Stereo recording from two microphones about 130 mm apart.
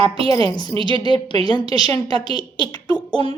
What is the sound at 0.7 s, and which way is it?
Speech, 40° right (ahead or behind).